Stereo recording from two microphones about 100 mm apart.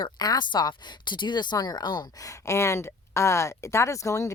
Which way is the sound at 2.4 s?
30° left (ahead or behind).